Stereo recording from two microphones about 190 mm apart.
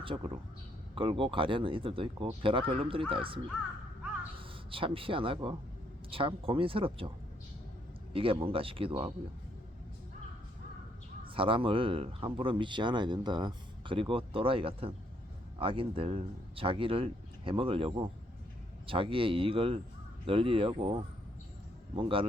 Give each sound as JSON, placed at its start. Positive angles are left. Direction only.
{"t": 0.0, "sound": "a man's voice", "side_deg": -30}
{"t": 8.1, "sound": "speech", "side_deg": -30}
{"t": 11.3, "sound": "speech", "side_deg": -25}